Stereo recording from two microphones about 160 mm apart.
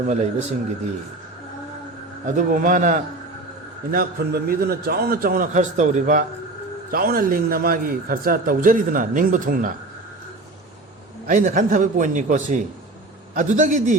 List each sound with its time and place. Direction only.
0.1 s a man's voice: 45° right (ahead or behind)
2.2 s a man's voice: 55° right (ahead or behind)
3.9 s a man's voice: 70° right (ahead or behind); by 6.2 s 50° right (ahead or behind)
6.9 s a man's voice: 65° right (ahead or behind)
11.3 s a man's voice: 55° right (ahead or behind)